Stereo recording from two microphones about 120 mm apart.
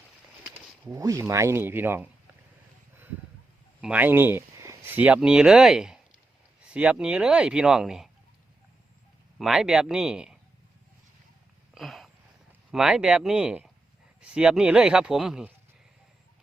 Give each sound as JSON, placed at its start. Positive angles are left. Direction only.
{"t": 0.5, "sound": "speech", "side_deg": -25}
{"t": 3.8, "sound": "a sound", "side_deg": -10}
{"t": 4.9, "sound": "speech", "side_deg": -10}
{"t": 9.4, "sound": "speech", "side_deg": -5}
{"t": 11.7, "sound": "a sound", "side_deg": 0}
{"t": 12.7, "sound": "speech", "side_deg": -5}